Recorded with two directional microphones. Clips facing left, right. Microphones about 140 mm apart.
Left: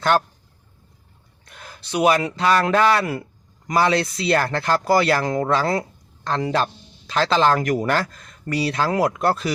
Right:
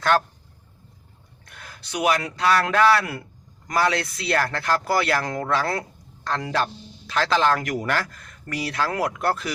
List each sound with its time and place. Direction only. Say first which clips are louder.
1.5 s speech: left 6 dB; 25° left (ahead or behind)
7.8 s speech: left 4 dB; 30° left (ahead or behind)